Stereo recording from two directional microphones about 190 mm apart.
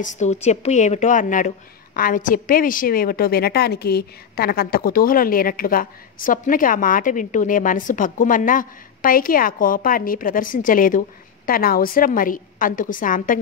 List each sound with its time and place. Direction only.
0.0 s a woman's voice: 40° left (ahead or behind)